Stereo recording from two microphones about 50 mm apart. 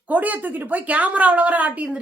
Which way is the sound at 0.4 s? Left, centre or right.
Right.